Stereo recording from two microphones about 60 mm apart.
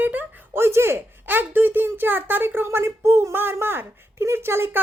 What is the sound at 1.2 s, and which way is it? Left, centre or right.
Speech, right.